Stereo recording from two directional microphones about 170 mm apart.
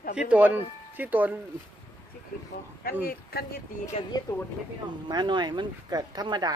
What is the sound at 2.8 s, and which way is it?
Speech, 60° left (ahead or behind).